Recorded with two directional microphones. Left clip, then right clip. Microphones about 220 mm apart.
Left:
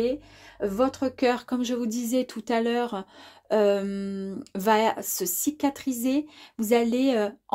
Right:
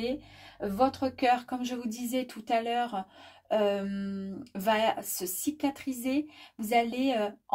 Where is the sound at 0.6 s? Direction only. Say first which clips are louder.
Left 3 dB; 40° left (ahead or behind).